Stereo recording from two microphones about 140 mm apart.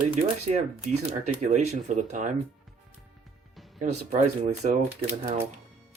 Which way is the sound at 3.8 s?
55° right (ahead or behind).